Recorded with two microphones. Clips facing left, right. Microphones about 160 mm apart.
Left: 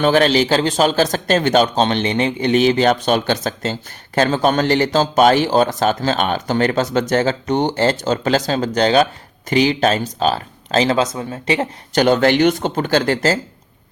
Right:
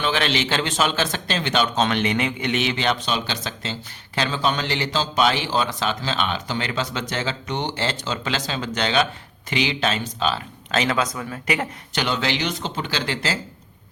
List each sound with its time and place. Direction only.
0.0 s speech: 45° left (ahead or behind); by 11.7 s 30° left (ahead or behind)
11.9 s speech: 50° left (ahead or behind)